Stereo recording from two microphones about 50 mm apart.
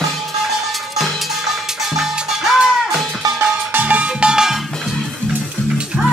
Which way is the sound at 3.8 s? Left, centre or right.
Right.